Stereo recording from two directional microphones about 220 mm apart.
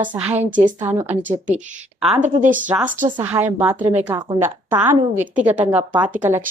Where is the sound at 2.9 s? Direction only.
35° right (ahead or behind).